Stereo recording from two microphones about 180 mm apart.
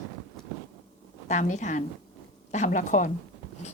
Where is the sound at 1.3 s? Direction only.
40° left (ahead or behind).